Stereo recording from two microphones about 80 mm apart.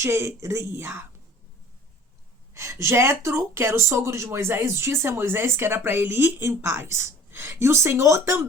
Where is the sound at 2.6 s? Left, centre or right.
Right.